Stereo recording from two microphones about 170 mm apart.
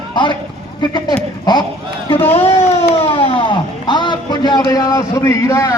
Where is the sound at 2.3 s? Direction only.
35° left (ahead or behind).